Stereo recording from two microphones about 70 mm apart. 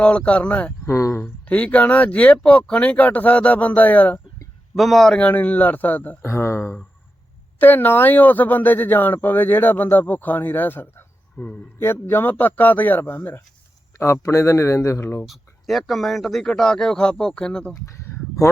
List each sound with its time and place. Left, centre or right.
0.0 s speech: centre
0.9 s a man's voice: left
1.5 s speech: centre
4.7 s speech: centre
5.1 s speech: centre
6.2 s speech: left
11.8 s speech: left
14.0 s a man's voice: left
15.0 s speech: left
15.3 s speech: centre